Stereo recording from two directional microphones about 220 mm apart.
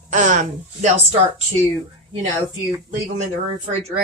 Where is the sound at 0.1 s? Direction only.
35° right (ahead or behind).